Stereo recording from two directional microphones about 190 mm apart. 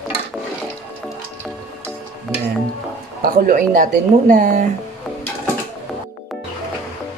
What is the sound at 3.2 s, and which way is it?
Speech, 45° right (ahead or behind).